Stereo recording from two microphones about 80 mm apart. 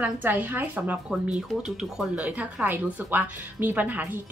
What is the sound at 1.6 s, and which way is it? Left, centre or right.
Speech, centre.